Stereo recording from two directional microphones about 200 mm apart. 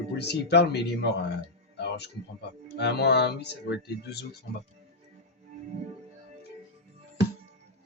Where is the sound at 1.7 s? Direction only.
60° left (ahead or behind).